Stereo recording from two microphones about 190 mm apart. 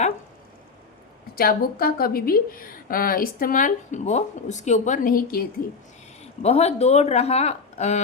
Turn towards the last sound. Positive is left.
turn(degrees=35)  # may be behind; listen again after turning